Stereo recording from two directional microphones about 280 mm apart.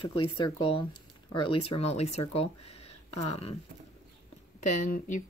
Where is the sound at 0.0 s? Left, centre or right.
Centre.